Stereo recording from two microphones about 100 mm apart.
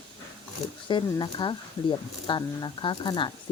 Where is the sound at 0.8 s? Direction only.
50° left (ahead or behind).